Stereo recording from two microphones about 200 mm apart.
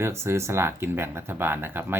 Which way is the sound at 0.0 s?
10° right (ahead or behind).